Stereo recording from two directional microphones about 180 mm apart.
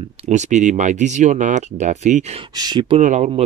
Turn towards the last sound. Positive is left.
turn(degrees=-40)  # may be behind; listen again after turning